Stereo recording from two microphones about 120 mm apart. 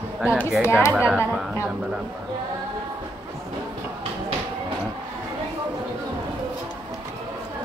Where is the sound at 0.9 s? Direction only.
10° right (ahead or behind).